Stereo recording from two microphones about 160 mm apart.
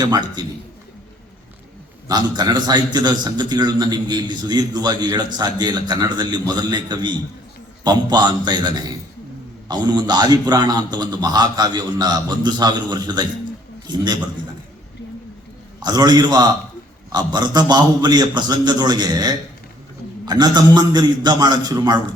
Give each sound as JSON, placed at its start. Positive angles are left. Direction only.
{"t": 0.0, "sound": "a man's voice", "side_deg": -25}
{"t": 2.0, "sound": "a man's voice", "side_deg": -25}
{"t": 15.8, "sound": "a man's voice", "side_deg": -25}